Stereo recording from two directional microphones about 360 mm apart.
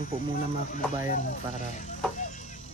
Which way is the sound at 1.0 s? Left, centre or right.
Centre.